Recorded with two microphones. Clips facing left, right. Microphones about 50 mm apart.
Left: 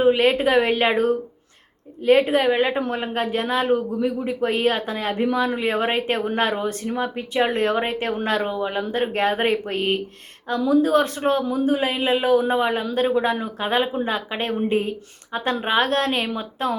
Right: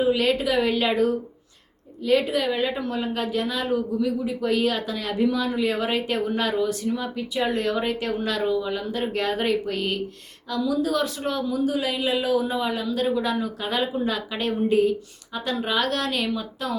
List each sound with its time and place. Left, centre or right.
0.0 s a woman's voice: left